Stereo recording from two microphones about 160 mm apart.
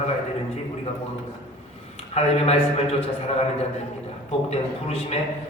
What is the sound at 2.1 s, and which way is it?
Speech, 40° left (ahead or behind).